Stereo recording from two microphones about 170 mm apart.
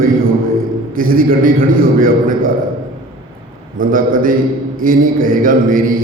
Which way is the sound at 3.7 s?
55° right (ahead or behind).